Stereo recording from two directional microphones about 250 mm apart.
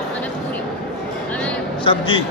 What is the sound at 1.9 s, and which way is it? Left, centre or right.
Speech, left.